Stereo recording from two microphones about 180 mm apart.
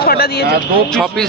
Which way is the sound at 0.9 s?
5° left (ahead or behind).